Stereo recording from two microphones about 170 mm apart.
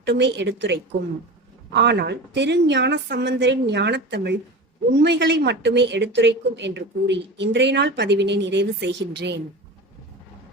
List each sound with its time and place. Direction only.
0.0 s a woman's voice: 85° right